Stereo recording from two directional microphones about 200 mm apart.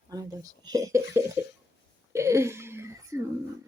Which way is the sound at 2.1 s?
15° right (ahead or behind).